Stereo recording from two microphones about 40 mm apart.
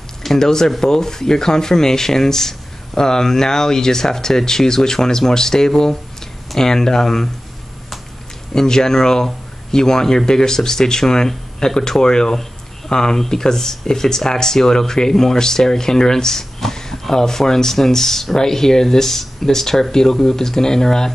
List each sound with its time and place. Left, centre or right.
0.2 s speech: centre
8.5 s speech: centre